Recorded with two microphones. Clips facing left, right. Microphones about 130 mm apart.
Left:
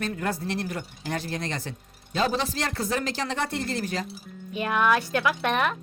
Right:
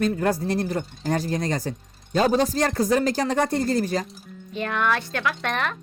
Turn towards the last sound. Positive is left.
turn(degrees=10)  # may be behind; listen again after turning